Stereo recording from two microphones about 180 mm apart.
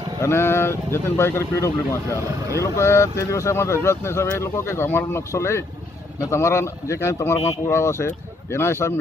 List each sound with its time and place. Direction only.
0.2 s speech: 15° left (ahead or behind)